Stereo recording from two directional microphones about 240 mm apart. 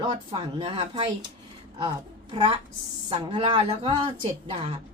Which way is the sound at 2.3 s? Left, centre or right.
Right.